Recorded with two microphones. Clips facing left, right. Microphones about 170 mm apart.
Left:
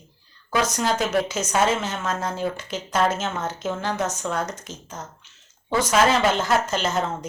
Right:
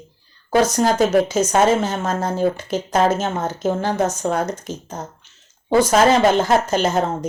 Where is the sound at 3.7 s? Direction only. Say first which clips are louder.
Right 7 dB; 40° right (ahead or behind).